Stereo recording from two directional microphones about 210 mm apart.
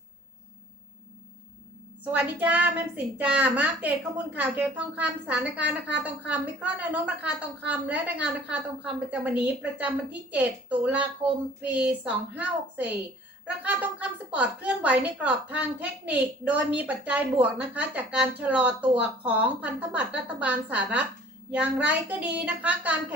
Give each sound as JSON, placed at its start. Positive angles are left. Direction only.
{"t": 2.0, "sound": "a woman's voice", "side_deg": -5}